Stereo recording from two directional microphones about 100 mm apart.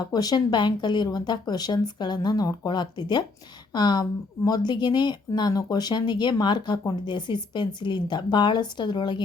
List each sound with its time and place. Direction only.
0.0 s speech: 40° left (ahead or behind)